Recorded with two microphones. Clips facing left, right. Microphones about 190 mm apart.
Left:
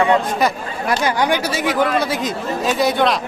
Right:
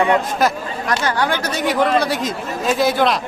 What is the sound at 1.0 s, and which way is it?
Speech, 15° left (ahead or behind).